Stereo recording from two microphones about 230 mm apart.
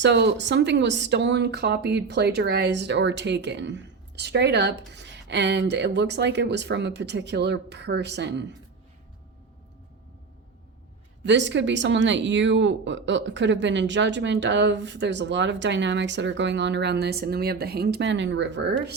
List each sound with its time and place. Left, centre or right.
0.0 s speech: right
11.3 s speech: right